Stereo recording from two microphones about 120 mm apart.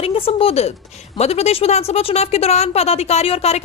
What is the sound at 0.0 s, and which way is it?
A woman's voice, 50° left (ahead or behind).